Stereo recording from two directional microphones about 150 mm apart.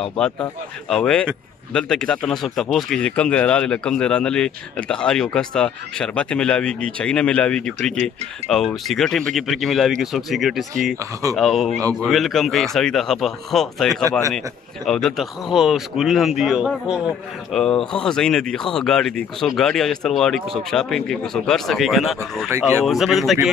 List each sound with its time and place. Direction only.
0.0 s a man's voice: 5° left (ahead or behind)
22.5 s speech: 15° right (ahead or behind)
22.8 s a man's voice: centre (ahead or behind)